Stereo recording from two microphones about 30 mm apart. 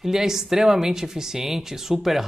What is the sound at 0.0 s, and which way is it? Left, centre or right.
Speech, centre.